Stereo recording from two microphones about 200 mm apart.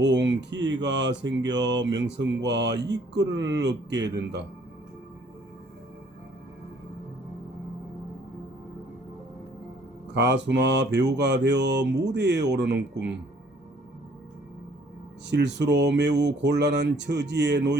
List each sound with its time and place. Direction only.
0.0 s speech: 60° right (ahead or behind)
10.2 s speech: 60° right (ahead or behind)
15.3 s speech: 60° right (ahead or behind)